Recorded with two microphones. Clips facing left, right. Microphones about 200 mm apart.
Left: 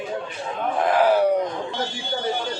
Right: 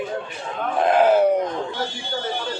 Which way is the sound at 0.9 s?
25° right (ahead or behind).